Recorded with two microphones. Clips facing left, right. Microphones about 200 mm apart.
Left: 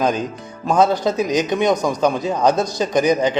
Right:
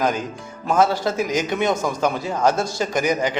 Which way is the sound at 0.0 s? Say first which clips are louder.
Left 3 dB; 20° left (ahead or behind).